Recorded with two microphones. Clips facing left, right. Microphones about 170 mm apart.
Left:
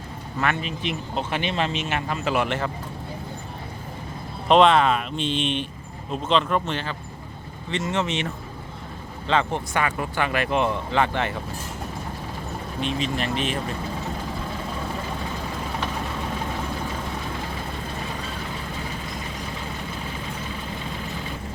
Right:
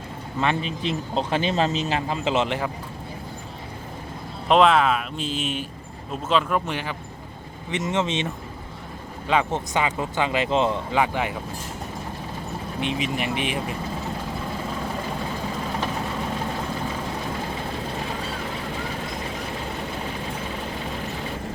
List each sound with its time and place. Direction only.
0.3 s speech: 30° right (ahead or behind)
4.4 s speech: centre (ahead or behind); by 8.3 s 20° right (ahead or behind)
9.2 s speech: 10° right (ahead or behind)
12.8 s speech: 15° right (ahead or behind)